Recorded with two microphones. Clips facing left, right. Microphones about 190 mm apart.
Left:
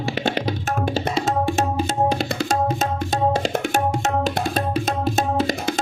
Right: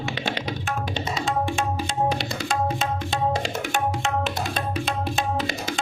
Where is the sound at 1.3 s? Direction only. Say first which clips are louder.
Left 2 dB; 40° left (ahead or behind).